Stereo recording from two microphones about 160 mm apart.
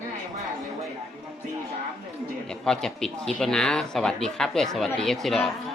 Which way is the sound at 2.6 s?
5° left (ahead or behind).